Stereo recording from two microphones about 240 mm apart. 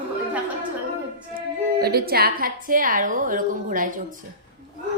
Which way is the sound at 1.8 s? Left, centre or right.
Right.